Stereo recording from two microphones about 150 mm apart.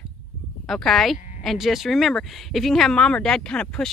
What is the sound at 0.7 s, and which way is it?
Speech, centre (ahead or behind).